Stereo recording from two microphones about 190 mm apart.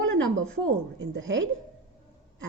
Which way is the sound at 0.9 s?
85° right.